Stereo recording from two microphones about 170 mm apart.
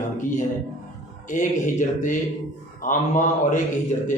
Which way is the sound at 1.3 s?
50° left (ahead or behind).